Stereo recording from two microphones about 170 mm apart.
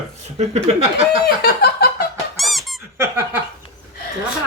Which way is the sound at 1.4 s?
65° left (ahead or behind).